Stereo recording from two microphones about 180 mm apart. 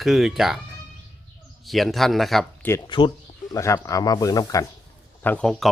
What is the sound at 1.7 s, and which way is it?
Speech, centre (ahead or behind).